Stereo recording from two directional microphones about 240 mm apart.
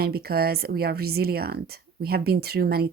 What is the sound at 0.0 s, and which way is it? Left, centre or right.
Speech, right.